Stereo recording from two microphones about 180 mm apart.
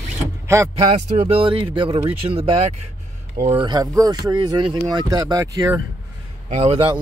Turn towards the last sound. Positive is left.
turn(degrees=-30)  # may be behind; listen again after turning